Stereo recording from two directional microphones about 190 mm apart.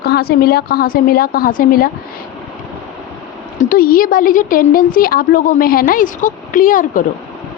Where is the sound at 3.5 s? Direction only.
50° left (ahead or behind).